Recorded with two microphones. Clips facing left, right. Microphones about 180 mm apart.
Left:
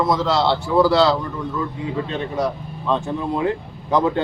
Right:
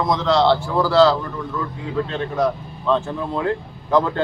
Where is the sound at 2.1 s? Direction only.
15° left (ahead or behind).